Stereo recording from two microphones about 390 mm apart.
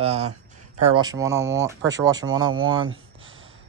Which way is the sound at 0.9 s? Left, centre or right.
Centre.